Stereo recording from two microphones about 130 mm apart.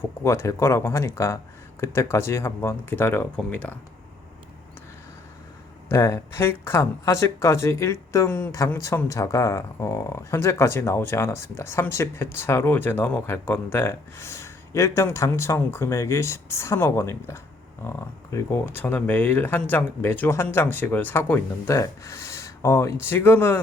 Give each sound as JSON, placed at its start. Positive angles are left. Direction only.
{"t": 0.0, "sound": "speech", "side_deg": 20}
{"t": 5.9, "sound": "speech", "side_deg": 20}